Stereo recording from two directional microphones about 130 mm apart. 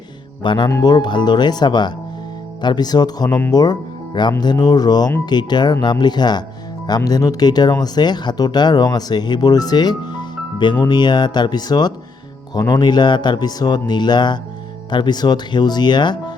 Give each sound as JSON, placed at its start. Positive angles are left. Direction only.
{"t": 0.4, "sound": "speech", "side_deg": 35}
{"t": 3.2, "sound": "speech", "side_deg": 15}
{"t": 3.5, "sound": "speech", "side_deg": 30}